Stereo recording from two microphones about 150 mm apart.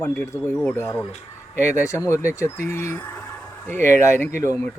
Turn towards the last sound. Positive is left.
turn(degrees=20)  # may be behind; listen again after turning